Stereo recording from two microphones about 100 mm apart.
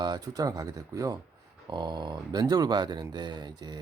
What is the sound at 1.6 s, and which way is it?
Speech, 50° right (ahead or behind).